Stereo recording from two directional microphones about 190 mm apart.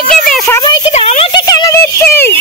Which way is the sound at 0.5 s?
20° left (ahead or behind).